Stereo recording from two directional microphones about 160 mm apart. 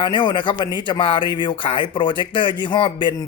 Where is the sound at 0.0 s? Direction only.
30° left (ahead or behind).